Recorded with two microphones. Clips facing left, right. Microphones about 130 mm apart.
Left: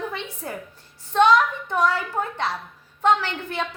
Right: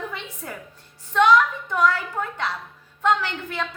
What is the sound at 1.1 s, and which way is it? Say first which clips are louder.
A woman's voice: even; 30° left (ahead or behind).